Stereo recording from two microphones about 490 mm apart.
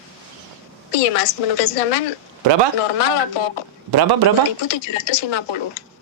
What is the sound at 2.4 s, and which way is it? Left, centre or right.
Speech, right.